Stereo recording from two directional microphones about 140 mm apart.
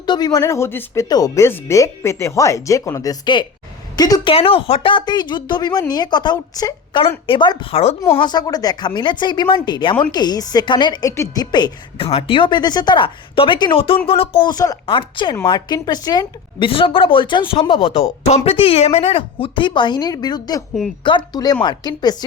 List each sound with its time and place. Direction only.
0.0 s a woman's voice: 30° left (ahead or behind)
8.2 s a woman's voice: 30° left (ahead or behind)
11.1 s speech: 20° left (ahead or behind)
11.5 s a woman's voice: 35° left (ahead or behind)
14.5 s a woman's voice: 25° left (ahead or behind)